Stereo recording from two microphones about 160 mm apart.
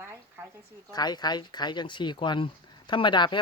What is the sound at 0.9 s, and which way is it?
Speech, 25° left (ahead or behind).